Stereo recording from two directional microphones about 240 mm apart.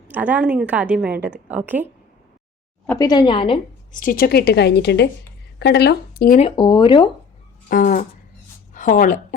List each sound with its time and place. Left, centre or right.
0.1 s a woman's voice: centre
2.8 s a woman's voice: centre
3.9 s a woman's voice: left
6.6 s speech: centre
7.7 s a woman's voice: left